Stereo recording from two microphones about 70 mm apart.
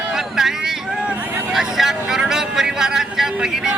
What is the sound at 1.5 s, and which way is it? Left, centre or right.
Speech, centre.